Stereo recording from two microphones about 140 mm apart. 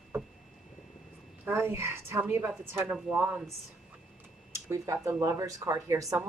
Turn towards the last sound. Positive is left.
turn(degrees=-20)  # may be behind; listen again after turning